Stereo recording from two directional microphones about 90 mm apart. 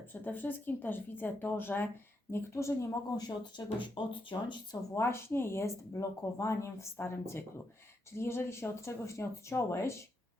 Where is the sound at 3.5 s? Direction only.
65° left (ahead or behind).